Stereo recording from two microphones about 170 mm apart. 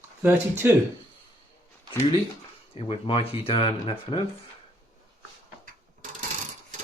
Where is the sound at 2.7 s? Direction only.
35° left (ahead or behind).